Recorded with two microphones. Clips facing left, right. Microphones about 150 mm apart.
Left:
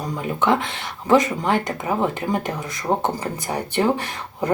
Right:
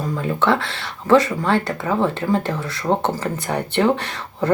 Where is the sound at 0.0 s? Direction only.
15° left (ahead or behind).